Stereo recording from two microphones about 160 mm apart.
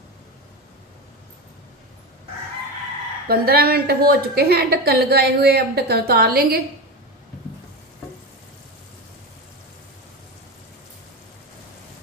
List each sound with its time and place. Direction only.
3.3 s a woman's voice: 70° right (ahead or behind)